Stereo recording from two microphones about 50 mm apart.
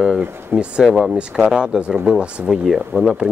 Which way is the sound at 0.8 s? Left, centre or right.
Centre.